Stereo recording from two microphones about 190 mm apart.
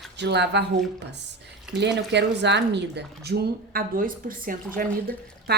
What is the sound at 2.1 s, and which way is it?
A woman's voice, 65° right (ahead or behind).